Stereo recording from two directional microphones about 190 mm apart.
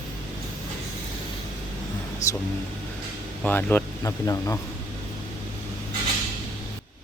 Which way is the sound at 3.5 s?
10° left (ahead or behind).